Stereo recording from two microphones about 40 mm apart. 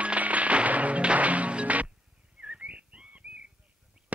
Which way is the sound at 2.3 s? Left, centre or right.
Right.